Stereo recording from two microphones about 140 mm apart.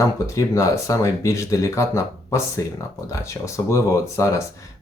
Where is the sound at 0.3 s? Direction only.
20° left (ahead or behind).